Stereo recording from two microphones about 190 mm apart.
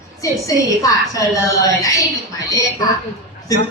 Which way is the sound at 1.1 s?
20° left (ahead or behind).